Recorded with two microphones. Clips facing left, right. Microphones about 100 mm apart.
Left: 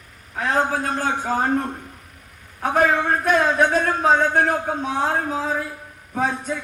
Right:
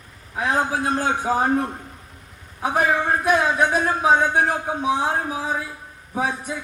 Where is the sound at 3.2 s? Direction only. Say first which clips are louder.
Left 2 dB; 10° right (ahead or behind).